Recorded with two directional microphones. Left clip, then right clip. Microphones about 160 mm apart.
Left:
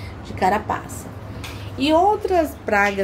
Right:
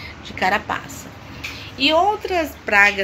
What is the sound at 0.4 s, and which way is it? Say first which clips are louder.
Speech: even; 10° left (ahead or behind).